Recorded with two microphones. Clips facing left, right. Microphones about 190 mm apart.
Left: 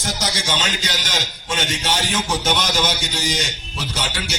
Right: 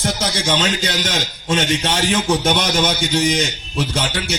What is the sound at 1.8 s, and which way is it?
A man's voice, 55° right (ahead or behind).